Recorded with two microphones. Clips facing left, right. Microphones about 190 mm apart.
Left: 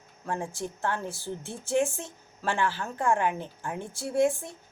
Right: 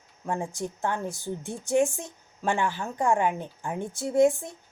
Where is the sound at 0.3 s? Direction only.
15° right (ahead or behind).